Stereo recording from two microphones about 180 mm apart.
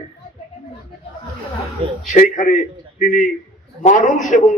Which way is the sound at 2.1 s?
45° left (ahead or behind).